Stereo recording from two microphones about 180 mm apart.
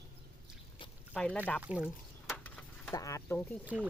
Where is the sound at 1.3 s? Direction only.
10° left (ahead or behind).